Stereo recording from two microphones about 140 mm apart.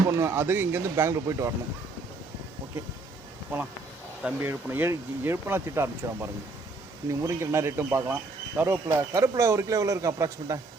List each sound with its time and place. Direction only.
0.1 s speech: 20° right (ahead or behind)
3.5 s speech: 15° right (ahead or behind)